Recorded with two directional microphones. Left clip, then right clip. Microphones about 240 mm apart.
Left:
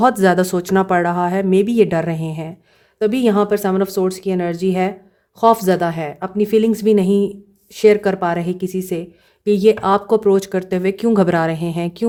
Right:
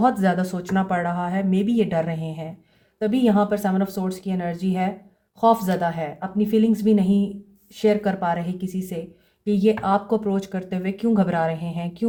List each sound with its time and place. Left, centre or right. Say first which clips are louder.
0.0 s speech: left 7 dB; left